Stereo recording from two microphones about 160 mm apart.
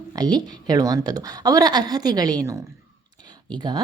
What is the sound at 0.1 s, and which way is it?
Speech, 25° right (ahead or behind).